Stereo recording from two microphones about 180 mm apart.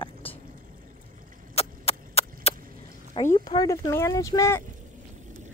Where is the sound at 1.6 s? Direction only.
35° left (ahead or behind).